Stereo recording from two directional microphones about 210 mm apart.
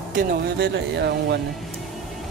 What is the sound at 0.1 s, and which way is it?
Speech, 45° right (ahead or behind).